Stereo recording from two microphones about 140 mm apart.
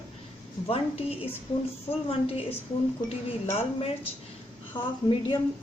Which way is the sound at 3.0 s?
45° left (ahead or behind).